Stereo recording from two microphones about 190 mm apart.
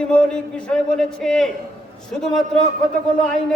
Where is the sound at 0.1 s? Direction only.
5° left (ahead or behind).